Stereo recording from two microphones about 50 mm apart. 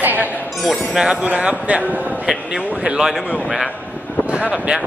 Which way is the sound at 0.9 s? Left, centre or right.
Right.